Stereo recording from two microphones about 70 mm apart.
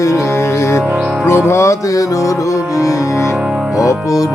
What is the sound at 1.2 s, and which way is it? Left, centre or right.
Music, left.